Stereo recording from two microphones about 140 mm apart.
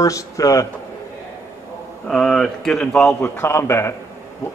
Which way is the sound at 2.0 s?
5° left (ahead or behind).